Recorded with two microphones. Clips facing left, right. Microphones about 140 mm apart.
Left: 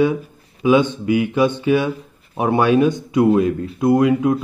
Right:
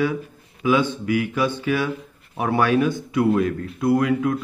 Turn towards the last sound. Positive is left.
turn(degrees=25)  # may be behind; listen again after turning